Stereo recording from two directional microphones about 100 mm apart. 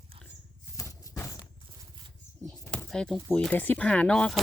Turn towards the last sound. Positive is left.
turn(degrees=10)  # may be behind; listen again after turning